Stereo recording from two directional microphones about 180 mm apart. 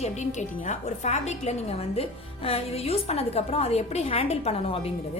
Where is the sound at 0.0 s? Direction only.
40° left (ahead or behind).